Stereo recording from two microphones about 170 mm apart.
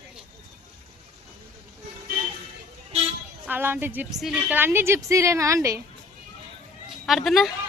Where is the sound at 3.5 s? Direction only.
10° right (ahead or behind).